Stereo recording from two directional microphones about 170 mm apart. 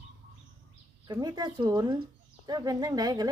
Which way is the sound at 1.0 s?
25° right (ahead or behind).